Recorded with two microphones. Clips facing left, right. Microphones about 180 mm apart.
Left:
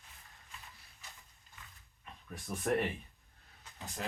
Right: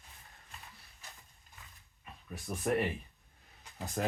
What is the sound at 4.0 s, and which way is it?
Speech, 50° right (ahead or behind).